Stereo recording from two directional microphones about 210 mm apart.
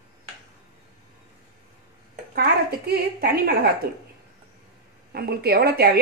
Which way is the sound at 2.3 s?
45° right (ahead or behind).